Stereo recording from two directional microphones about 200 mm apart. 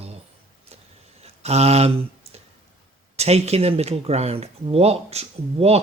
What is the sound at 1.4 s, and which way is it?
Speech, 30° right (ahead or behind).